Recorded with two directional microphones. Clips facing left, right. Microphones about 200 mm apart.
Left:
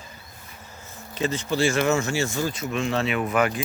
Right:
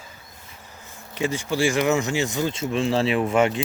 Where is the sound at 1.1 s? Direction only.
15° right (ahead or behind).